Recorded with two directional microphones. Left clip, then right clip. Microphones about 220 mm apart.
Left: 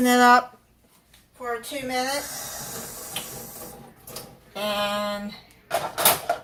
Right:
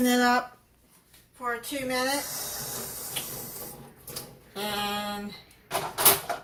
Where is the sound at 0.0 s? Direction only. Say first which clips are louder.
Left 7 dB; 25° left (ahead or behind).